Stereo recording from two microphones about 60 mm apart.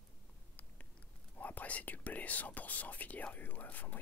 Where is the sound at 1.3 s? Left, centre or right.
Left.